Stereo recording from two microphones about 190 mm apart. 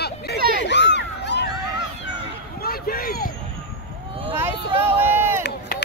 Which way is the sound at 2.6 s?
50° left (ahead or behind).